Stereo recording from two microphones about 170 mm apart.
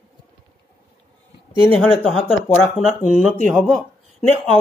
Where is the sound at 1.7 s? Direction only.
5° left (ahead or behind).